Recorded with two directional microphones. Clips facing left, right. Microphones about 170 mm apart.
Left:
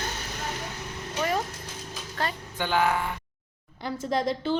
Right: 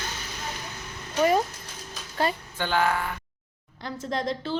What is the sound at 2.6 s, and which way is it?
Speech, 15° left (ahead or behind).